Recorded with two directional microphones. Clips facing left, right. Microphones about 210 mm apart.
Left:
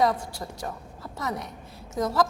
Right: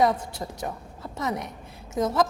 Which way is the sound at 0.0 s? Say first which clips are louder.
Right 1 dB; 20° right (ahead or behind).